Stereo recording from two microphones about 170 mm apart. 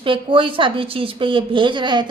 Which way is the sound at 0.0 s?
30° right (ahead or behind).